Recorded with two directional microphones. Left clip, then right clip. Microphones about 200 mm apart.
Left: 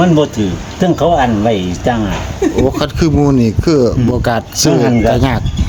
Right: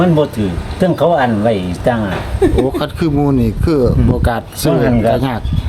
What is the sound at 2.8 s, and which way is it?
Speech, 25° left (ahead or behind).